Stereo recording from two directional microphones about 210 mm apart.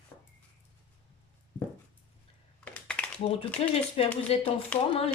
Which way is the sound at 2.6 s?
5° left (ahead or behind).